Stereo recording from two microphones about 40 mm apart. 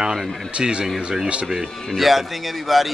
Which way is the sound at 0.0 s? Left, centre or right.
Centre.